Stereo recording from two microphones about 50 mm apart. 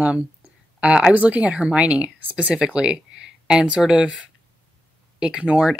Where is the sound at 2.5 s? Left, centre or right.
Centre.